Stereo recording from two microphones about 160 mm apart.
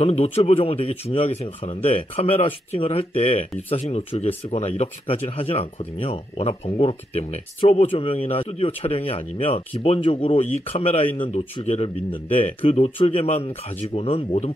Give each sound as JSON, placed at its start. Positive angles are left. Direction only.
{"t": 0.0, "sound": "speech", "side_deg": 40}